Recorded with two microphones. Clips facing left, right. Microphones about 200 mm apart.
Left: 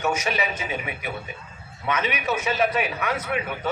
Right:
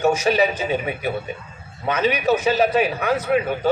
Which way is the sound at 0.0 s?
30° right (ahead or behind).